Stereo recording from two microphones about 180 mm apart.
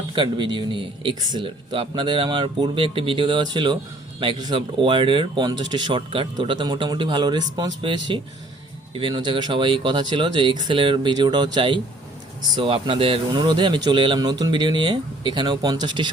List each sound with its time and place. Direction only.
0.1 s a man's voice: 25° right (ahead or behind)